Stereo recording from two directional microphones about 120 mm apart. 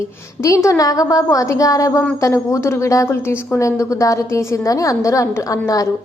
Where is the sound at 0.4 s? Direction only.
25° left (ahead or behind).